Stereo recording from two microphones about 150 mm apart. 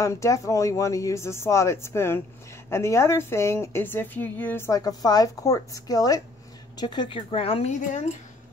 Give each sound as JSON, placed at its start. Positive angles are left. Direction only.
{"t": 0.0, "sound": "a woman's voice", "side_deg": 20}